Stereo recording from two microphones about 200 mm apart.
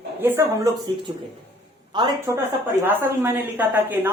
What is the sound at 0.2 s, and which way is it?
Speech, 10° right (ahead or behind).